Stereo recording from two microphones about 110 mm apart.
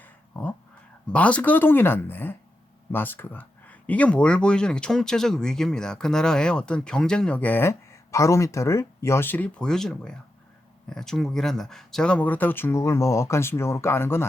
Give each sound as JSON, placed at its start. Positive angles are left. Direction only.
{"t": 0.0, "sound": "a sound", "side_deg": 10}
{"t": 1.1, "sound": "speech", "side_deg": 10}
{"t": 9.6, "sound": "speech", "side_deg": 5}